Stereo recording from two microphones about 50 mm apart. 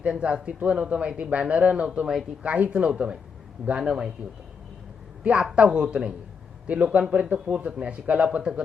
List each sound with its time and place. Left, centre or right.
0.0 s a man's voice: right
5.2 s speech: centre